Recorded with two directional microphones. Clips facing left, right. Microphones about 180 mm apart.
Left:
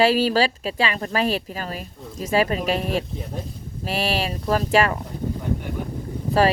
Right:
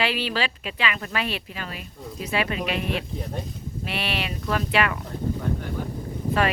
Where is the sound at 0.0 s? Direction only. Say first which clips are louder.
Left 8 dB; 40° left (ahead or behind).